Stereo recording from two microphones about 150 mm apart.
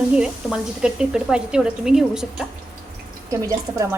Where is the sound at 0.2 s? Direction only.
5° right (ahead or behind).